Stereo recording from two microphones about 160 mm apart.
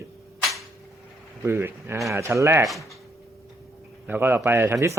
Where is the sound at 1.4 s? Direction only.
15° right (ahead or behind).